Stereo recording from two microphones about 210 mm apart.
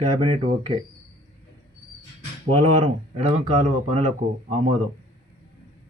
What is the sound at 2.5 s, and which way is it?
Speech, 30° right (ahead or behind).